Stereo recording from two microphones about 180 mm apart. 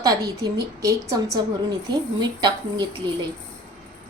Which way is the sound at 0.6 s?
15° right (ahead or behind).